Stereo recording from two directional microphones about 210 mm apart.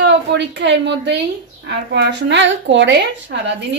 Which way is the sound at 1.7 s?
55° right (ahead or behind).